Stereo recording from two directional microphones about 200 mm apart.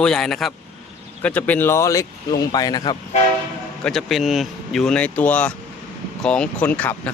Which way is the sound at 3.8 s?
Centre (ahead or behind).